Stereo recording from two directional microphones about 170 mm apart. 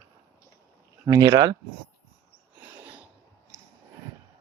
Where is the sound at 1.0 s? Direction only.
20° right (ahead or behind).